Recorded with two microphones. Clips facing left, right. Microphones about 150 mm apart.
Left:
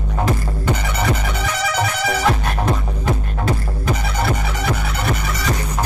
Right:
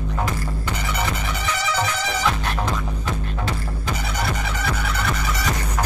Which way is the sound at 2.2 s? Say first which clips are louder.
Left 3 dB; 50° left (ahead or behind).